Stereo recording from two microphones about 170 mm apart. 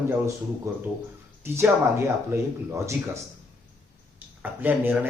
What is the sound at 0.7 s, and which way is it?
Speech, 15° right (ahead or behind).